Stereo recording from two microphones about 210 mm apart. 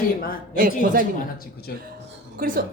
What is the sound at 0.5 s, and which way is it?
Speech, 40° right (ahead or behind).